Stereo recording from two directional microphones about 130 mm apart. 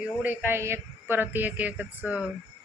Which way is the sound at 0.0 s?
15° right (ahead or behind).